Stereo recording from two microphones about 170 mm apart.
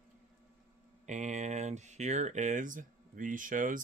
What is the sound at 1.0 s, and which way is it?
Speech, 45° right (ahead or behind).